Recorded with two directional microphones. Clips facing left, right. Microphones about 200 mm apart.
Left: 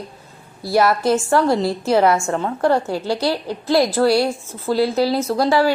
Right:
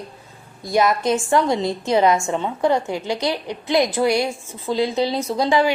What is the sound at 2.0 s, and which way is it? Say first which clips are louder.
Speech: left 1 dB; 15° right (ahead or behind).